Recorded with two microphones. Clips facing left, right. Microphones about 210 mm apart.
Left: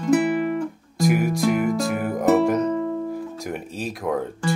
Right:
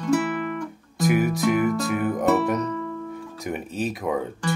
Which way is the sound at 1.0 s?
Centre (ahead or behind).